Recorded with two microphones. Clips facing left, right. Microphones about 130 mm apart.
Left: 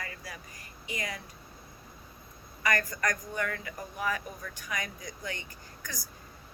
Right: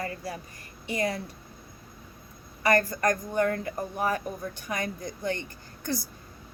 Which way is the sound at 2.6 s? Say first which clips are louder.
Right 7 dB; 30° right (ahead or behind).